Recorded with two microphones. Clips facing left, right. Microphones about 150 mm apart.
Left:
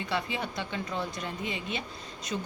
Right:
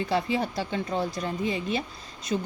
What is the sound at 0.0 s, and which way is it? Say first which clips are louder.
Speech: right 6 dB; 35° right (ahead or behind).